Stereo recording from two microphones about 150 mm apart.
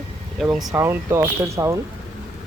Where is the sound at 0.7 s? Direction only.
15° right (ahead or behind).